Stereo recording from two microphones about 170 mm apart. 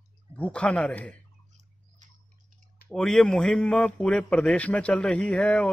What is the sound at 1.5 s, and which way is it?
Bird, 45° right (ahead or behind).